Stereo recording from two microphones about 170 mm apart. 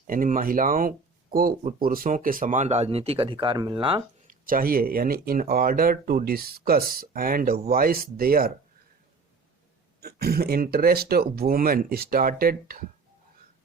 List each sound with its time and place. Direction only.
0.1 s speech: 55° right (ahead or behind); by 4.0 s 30° right (ahead or behind)
4.3 s speech: 55° right (ahead or behind)
10.0 s speech: 65° right (ahead or behind)